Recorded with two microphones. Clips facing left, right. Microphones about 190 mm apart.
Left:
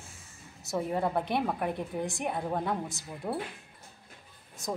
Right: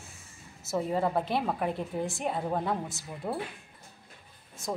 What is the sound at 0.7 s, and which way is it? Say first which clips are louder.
Speech: right 1 dB; centre (ahead or behind).